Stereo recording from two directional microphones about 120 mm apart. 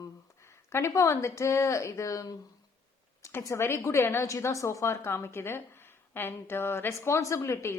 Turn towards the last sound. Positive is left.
turn(degrees=25)  # may be behind; listen again after turning